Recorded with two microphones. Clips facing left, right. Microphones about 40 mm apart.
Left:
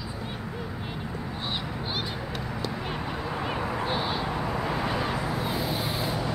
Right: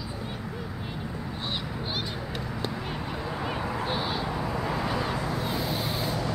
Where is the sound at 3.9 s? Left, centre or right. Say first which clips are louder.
Left 1 dB; centre.